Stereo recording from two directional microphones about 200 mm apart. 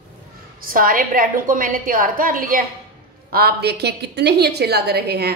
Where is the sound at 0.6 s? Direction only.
45° right (ahead or behind).